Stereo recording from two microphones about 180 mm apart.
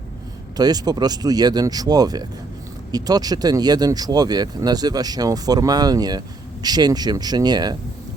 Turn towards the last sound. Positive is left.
turn(degrees=-25)  # may be behind; listen again after turning